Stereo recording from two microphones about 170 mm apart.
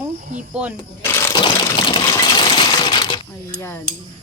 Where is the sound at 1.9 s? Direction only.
25° left (ahead or behind).